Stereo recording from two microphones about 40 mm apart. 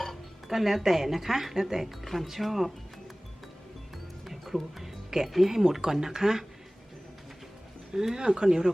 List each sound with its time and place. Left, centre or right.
0.0 s speech: centre
4.3 s speech: centre
7.9 s speech: centre